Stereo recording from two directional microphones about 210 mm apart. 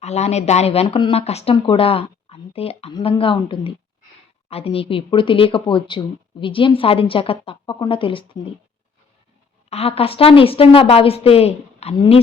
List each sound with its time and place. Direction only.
0.0 s speech: 30° left (ahead or behind)
9.6 s speech: 30° left (ahead or behind)